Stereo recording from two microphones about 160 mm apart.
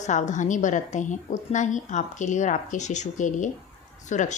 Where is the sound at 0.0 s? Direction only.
50° left (ahead or behind).